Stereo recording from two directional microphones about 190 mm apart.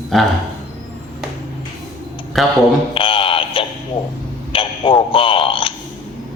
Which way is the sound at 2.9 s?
30° left (ahead or behind).